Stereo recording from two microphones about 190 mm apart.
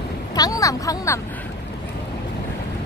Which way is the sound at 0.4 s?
20° left (ahead or behind).